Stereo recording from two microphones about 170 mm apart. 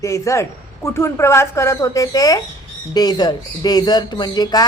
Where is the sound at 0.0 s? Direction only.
20° left (ahead or behind).